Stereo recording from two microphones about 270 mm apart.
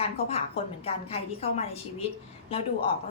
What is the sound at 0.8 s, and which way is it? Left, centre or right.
Speech, left.